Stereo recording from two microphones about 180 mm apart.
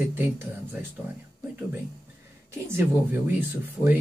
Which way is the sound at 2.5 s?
10° right (ahead or behind).